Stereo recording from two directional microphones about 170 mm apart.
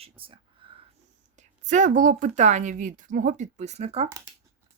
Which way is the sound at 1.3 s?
45° right (ahead or behind).